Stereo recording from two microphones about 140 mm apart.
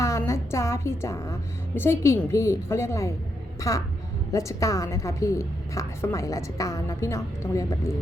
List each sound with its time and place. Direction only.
0.0 s a woman's voice: 20° left (ahead or behind)